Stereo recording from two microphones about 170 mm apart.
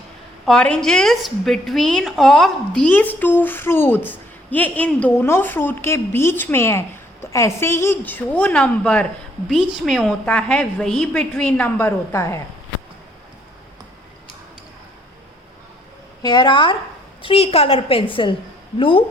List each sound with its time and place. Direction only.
0.4 s a woman's voice: 5° left (ahead or behind)
16.2 s a woman's voice: 25° left (ahead or behind)